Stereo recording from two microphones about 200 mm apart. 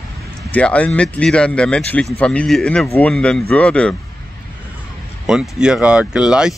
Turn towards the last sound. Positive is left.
turn(degrees=-5)  # may be behind; listen again after turning